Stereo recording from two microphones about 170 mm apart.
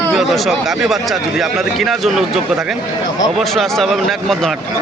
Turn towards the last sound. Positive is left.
turn(degrees=0)  # may be behind; listen again after turning